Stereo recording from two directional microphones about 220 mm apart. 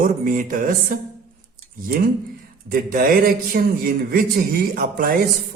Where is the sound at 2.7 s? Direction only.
40° right (ahead or behind).